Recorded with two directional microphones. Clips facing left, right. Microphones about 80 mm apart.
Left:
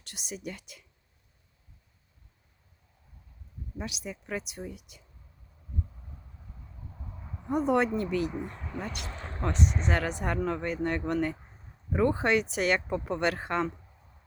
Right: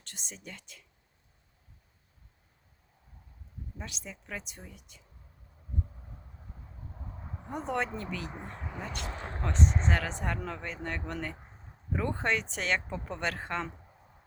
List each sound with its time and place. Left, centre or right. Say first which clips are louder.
0.0 s speech: left 8 dB; centre
3.8 s speech: left 7 dB; centre
6.1 s a sound: even; centre
7.2 s a sound: even; right
7.4 s speech: left 7 dB; centre
8.8 s speech: left 2 dB; centre
9.0 s speech: right 2 dB; centre
9.4 s speech: left 1 dB; centre